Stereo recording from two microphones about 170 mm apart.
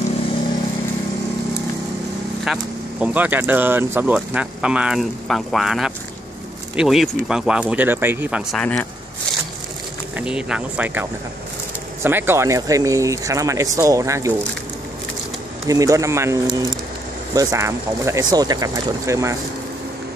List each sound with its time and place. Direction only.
2.4 s speech: 5° right (ahead or behind)
8.5 s speech: 5° left (ahead or behind)
10.1 s speech: 5° right (ahead or behind)
15.6 s speech: 20° right (ahead or behind)